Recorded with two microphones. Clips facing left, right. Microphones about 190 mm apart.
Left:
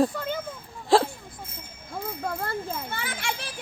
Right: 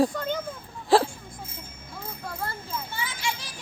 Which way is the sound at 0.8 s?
Centre (ahead or behind).